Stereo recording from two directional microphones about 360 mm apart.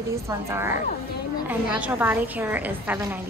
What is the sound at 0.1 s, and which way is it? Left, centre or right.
A woman's voice, centre.